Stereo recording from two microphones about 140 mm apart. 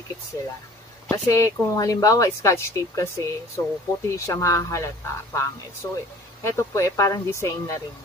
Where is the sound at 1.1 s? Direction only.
20° left (ahead or behind).